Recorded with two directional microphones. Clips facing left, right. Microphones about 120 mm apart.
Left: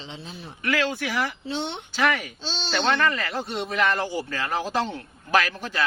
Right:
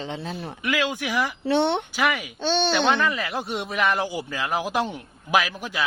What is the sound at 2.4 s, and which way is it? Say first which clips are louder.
Speech: right 10 dB; 60° right (ahead or behind).